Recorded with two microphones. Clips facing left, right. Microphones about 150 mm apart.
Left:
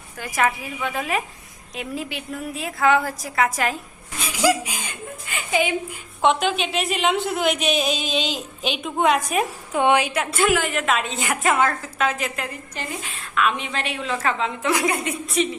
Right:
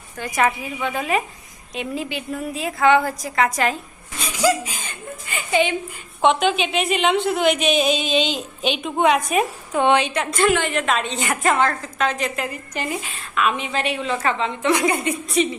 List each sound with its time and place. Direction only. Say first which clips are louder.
0.2 s a woman's voice: right 2 dB; 5° left (ahead or behind)
5.2 s a woman's voice: right 3 dB; centre (ahead or behind)
9.7 s a woman's voice: right 1 dB; 10° left (ahead or behind)